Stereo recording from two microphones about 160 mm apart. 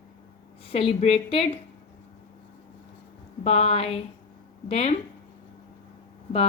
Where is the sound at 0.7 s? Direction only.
35° left (ahead or behind).